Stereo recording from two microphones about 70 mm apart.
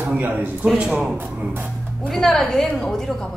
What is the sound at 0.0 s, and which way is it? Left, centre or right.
Speech, right.